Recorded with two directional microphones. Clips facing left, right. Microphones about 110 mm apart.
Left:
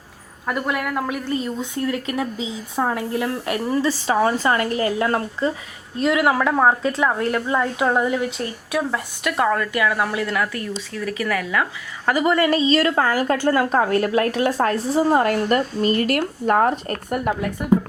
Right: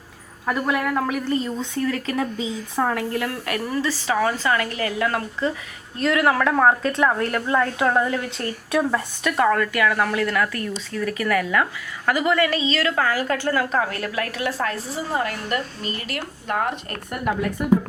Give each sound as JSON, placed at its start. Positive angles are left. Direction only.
{"t": 0.4, "sound": "a woman's voice", "side_deg": 5}
{"t": 6.0, "sound": "speech", "side_deg": 15}
{"t": 12.0, "sound": "speech", "side_deg": 25}